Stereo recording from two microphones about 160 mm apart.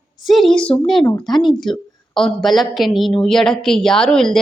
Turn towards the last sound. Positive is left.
turn(degrees=5)  # may be behind; listen again after turning